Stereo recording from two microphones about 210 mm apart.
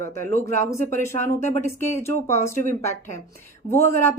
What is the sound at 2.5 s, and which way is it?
Speech, 35° left (ahead or behind).